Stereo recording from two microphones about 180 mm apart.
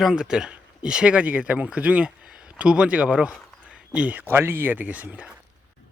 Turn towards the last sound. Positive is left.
turn(degrees=-10)  # may be behind; listen again after turning